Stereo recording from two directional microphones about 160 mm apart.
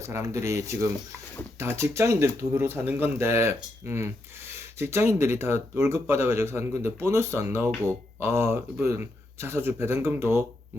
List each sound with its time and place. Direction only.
0.0 s speech: 15° right (ahead or behind)